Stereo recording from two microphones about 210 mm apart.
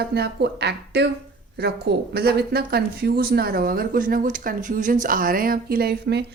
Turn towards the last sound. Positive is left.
turn(degrees=-50)  # may be behind; listen again after turning